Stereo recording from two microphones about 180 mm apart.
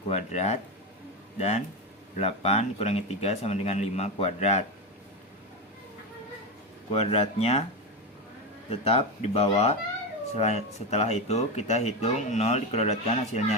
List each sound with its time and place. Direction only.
0.1 s speech: 40° left (ahead or behind)
6.9 s speech: 35° left (ahead or behind)
8.7 s speech: 30° left (ahead or behind)